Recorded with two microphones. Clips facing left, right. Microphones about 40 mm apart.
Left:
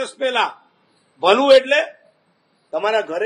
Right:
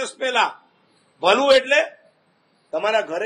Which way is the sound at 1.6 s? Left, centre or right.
Left.